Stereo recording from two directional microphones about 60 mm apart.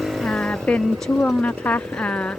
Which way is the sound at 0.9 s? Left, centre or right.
Centre.